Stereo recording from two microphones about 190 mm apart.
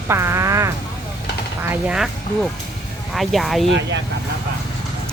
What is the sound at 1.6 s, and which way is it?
Speech, 5° right (ahead or behind).